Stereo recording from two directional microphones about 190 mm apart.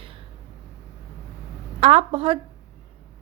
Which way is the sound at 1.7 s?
30° right (ahead or behind).